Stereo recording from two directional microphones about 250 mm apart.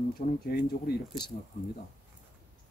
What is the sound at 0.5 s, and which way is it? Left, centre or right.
Speech, left.